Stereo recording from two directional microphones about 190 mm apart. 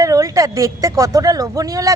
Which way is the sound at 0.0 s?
15° right (ahead or behind).